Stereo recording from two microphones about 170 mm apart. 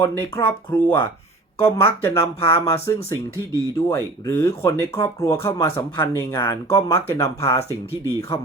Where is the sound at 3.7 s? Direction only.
15° left (ahead or behind).